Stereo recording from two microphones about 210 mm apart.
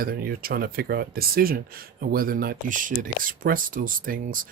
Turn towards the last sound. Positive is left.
turn(degrees=-40)  # may be behind; listen again after turning